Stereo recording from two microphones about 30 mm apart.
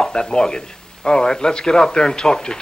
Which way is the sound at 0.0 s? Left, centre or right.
Left.